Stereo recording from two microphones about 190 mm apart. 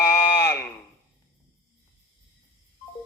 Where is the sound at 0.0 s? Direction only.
15° left (ahead or behind).